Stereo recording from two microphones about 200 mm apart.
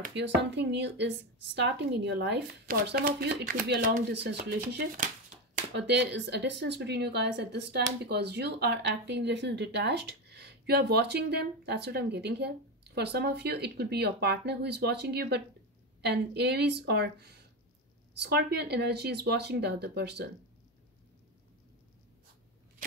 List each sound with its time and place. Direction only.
0.0 s speech: 60° right (ahead or behind)